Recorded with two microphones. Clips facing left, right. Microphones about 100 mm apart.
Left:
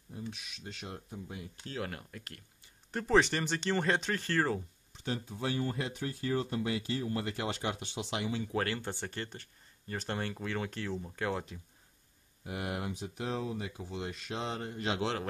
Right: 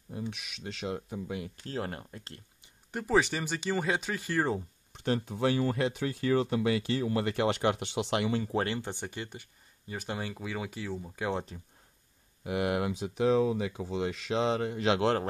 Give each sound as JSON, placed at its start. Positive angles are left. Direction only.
{"t": 0.1, "sound": "speech", "side_deg": -75}
{"t": 1.7, "sound": "speech", "side_deg": -35}
{"t": 2.9, "sound": "speech", "side_deg": -10}
{"t": 4.9, "sound": "speech", "side_deg": -60}
{"t": 8.5, "sound": "speech", "side_deg": -20}
{"t": 12.4, "sound": "speech", "side_deg": -90}